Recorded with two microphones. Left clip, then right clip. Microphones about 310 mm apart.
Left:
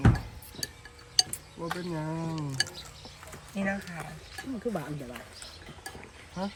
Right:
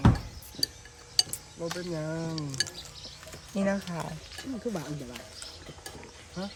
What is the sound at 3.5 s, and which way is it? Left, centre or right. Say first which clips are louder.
Speech: right 3 dB; centre.